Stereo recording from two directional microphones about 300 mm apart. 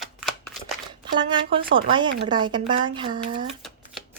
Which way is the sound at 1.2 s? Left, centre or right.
Centre.